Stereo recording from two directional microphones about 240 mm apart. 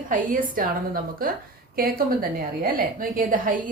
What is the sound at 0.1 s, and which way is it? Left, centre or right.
Speech, right.